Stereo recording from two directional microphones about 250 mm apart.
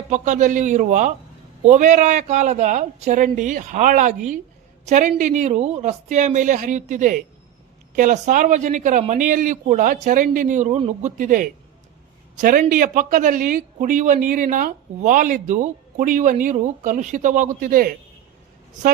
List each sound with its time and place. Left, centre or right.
0.1 s a man's voice: right